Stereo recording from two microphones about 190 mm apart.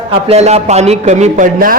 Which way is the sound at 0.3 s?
35° right (ahead or behind).